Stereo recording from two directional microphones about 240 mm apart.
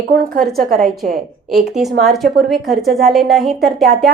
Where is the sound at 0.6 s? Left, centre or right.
Right.